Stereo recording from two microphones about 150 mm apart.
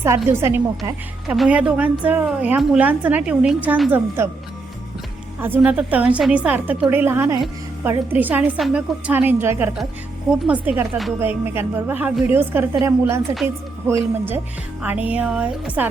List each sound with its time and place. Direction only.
0.0 s a woman's voice: 15° right (ahead or behind)
5.4 s a woman's voice: 10° right (ahead or behind)
11.2 s a woman's voice: 15° right (ahead or behind)
14.3 s a woman's voice: 10° right (ahead or behind)